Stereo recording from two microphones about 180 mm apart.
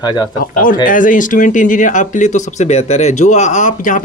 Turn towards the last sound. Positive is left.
turn(degrees=45)  # may be behind; listen again after turning